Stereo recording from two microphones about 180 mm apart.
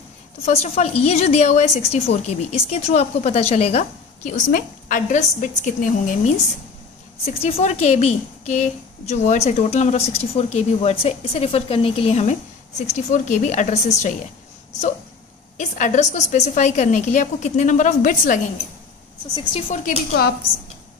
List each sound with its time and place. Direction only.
0.5 s a woman's voice: 35° left (ahead or behind)
7.2 s a woman's voice: 35° left (ahead or behind)
15.5 s a woman's voice: 45° left (ahead or behind)
19.7 s a woman's voice: 50° left (ahead or behind)